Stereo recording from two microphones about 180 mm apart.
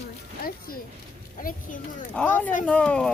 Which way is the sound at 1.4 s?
50° left (ahead or behind).